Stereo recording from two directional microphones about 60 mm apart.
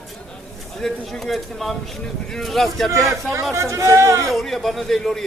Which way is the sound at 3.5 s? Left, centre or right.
Right.